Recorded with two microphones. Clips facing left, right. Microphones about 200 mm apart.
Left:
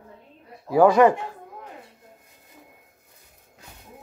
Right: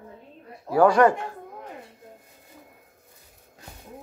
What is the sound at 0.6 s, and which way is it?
Speech, 10° left (ahead or behind).